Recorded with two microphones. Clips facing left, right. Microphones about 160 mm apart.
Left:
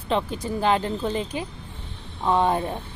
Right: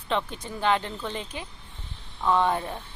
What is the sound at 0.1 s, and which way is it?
Speech, 35° left (ahead or behind).